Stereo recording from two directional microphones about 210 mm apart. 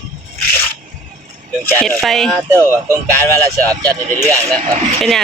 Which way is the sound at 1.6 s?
10° left (ahead or behind).